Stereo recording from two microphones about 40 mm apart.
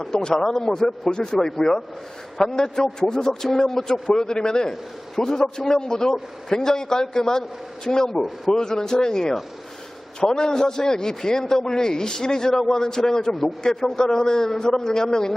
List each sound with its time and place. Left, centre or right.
0.0 s a man's voice: centre